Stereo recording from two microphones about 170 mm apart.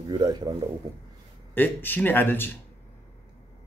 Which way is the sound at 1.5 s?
10° left (ahead or behind).